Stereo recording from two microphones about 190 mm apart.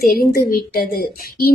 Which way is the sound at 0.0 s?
50° left (ahead or behind).